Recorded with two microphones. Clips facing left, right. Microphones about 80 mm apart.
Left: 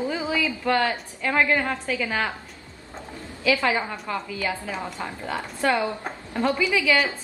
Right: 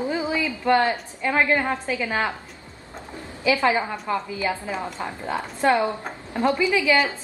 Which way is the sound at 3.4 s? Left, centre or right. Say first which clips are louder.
Right 2 dB; right.